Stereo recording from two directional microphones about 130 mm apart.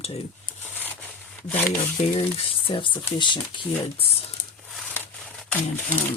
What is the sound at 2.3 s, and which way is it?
Speech, 45° left (ahead or behind).